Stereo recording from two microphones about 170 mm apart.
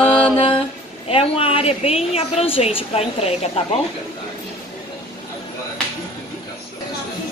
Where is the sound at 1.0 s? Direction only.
35° left (ahead or behind).